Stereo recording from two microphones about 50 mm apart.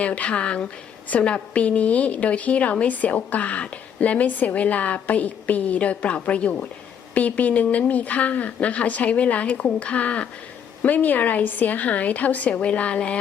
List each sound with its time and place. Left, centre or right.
0.0 s a woman's voice: left